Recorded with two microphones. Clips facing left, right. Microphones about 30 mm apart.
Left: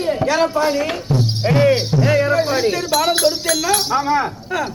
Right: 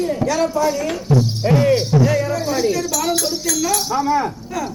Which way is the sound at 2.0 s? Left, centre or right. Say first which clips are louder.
Left 2 dB; left.